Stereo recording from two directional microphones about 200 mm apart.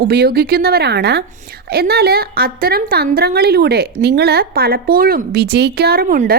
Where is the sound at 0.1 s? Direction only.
50° right (ahead or behind).